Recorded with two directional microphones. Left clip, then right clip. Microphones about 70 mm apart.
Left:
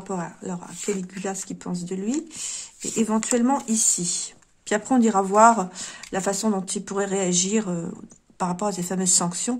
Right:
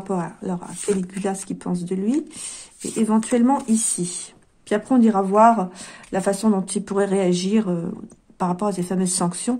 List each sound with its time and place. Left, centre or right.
0.1 s speech: centre
3.1 s speech: centre
4.6 s speech: left
6.1 s speech: centre
9.1 s speech: centre